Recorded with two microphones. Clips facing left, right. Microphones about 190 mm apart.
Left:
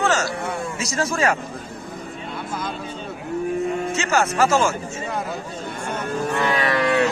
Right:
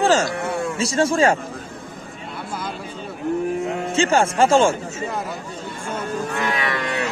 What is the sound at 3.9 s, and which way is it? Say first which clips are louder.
Speech: right 6 dB; 30° right (ahead or behind).